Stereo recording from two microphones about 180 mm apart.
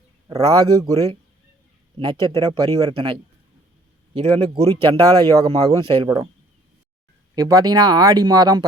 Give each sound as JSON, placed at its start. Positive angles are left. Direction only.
{"t": 0.3, "sound": "a man's voice", "side_deg": -20}
{"t": 7.3, "sound": "a man's voice", "side_deg": -20}